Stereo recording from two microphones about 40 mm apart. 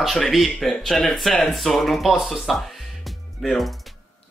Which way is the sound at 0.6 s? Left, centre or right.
Centre.